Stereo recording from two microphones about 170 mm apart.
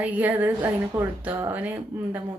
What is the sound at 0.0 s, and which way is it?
A woman's voice, 10° right (ahead or behind).